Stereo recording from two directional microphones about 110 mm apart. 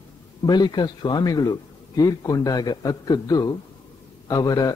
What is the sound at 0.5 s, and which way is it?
Speech, 40° left (ahead or behind).